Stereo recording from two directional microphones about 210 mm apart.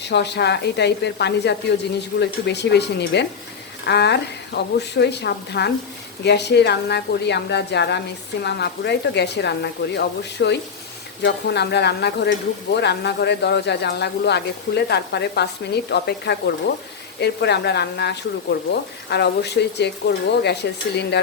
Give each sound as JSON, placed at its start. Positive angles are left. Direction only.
{"t": 0.0, "sound": "speech", "side_deg": 55}